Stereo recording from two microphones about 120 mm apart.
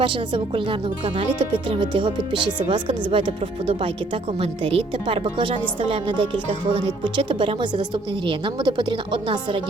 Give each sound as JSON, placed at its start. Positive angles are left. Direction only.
{"t": 0.0, "sound": "a woman's voice", "side_deg": -45}